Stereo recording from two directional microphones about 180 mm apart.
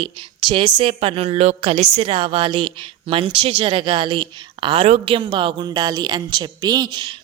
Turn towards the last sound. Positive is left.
turn(degrees=-25)  # may be behind; listen again after turning